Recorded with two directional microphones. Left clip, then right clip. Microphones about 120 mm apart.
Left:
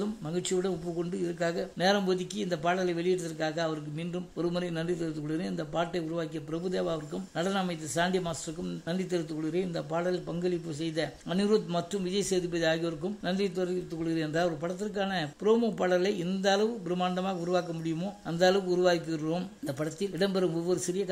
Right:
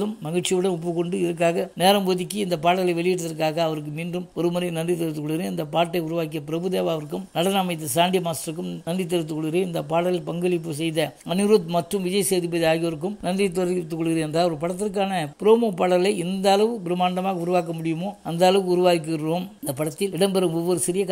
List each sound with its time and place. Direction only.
0.0 s a man's voice: 35° right (ahead or behind)
13.6 s a man's voice: 55° right (ahead or behind); by 20.8 s 35° right (ahead or behind)